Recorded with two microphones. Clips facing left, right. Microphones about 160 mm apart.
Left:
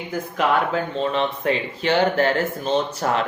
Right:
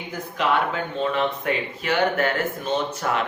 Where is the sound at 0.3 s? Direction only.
35° left (ahead or behind).